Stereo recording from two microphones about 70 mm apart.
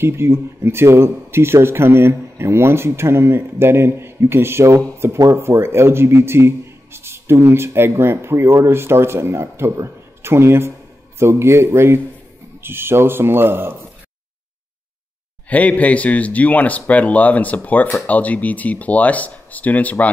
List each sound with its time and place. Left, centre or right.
0.0 s a man's voice: right
15.5 s a man's voice: left